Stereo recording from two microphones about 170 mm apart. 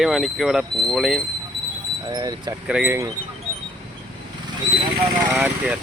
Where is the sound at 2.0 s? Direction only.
25° right (ahead or behind).